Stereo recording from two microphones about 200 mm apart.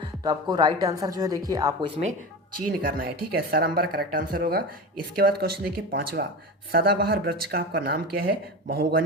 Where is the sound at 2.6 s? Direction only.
45° right (ahead or behind).